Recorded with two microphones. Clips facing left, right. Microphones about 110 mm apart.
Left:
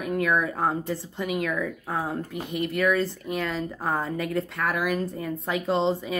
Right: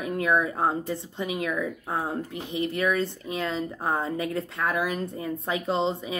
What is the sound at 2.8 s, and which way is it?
Speech, 20° right (ahead or behind).